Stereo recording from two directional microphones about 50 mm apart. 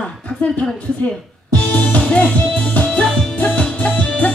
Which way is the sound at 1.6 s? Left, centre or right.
Left.